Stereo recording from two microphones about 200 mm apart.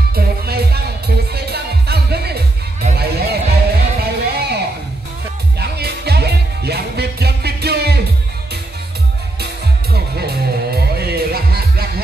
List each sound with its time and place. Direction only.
0.1 s music: 50° right (ahead or behind)
5.6 s music: 55° right (ahead or behind)
9.9 s music: 50° right (ahead or behind)